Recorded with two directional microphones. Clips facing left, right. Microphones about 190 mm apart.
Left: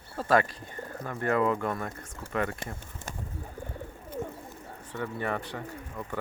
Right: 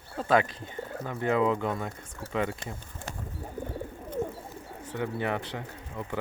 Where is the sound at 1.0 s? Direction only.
Centre (ahead or behind).